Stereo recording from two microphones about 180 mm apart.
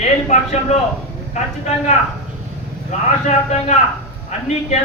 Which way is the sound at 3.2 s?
40° left (ahead or behind).